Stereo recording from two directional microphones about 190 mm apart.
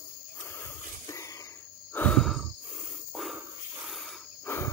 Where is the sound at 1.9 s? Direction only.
5° left (ahead or behind).